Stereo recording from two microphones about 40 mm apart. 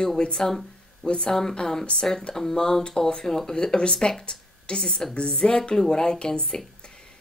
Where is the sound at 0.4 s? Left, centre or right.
Centre.